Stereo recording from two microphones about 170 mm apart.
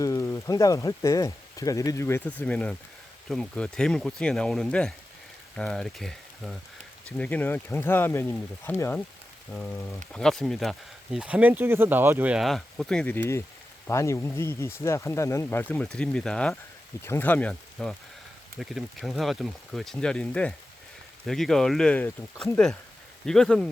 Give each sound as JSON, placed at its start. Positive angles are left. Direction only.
{"t": 0.0, "sound": "speech", "side_deg": 20}